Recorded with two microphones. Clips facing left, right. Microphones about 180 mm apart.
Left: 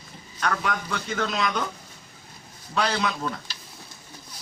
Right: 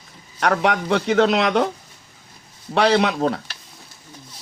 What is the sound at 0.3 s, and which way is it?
Speech, 70° right (ahead or behind).